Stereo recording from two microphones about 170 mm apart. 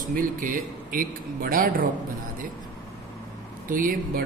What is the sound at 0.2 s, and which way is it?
A man's voice, 55° right (ahead or behind).